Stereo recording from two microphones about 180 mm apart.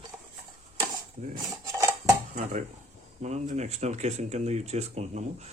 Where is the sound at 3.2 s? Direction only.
40° right (ahead or behind).